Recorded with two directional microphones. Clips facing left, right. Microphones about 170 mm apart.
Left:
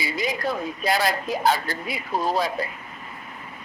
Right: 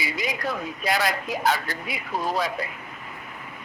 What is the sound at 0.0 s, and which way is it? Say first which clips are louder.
Speech: left 2 dB; 30° left (ahead or behind).